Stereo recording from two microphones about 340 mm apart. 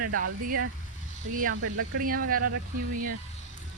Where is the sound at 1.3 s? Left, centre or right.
Right.